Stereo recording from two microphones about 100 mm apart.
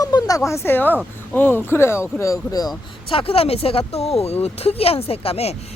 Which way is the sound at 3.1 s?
65° left (ahead or behind).